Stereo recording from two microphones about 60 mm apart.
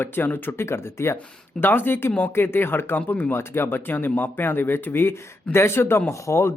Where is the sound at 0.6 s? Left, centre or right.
Left.